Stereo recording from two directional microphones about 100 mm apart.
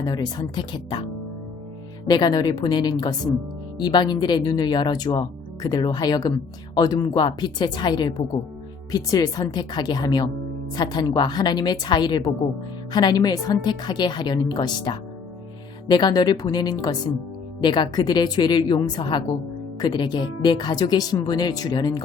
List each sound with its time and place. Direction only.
0.0 s a woman's voice: 45° left (ahead or behind)
2.0 s a woman's voice: 45° left (ahead or behind)